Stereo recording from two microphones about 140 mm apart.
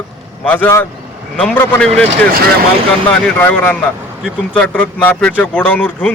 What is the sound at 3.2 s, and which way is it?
A man's voice, 10° left (ahead or behind).